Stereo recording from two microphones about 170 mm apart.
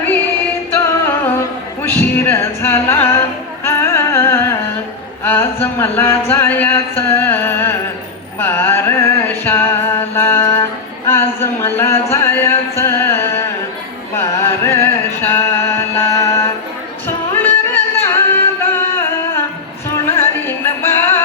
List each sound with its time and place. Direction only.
1.0 s music: 10° left (ahead or behind)
5.2 s a sound: 10° left (ahead or behind)
8.4 s music: 10° left (ahead or behind)